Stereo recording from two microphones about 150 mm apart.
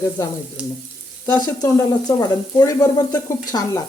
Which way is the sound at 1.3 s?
25° left (ahead or behind).